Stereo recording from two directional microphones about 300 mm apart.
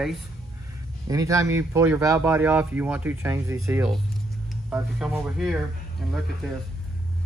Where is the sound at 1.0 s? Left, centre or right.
Centre.